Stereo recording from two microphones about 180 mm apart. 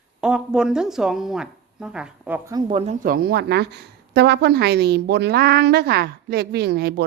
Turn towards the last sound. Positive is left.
turn(degrees=-65)  # may be behind; listen again after turning